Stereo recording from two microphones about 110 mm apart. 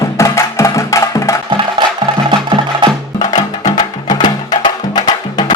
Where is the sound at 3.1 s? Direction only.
40° left (ahead or behind).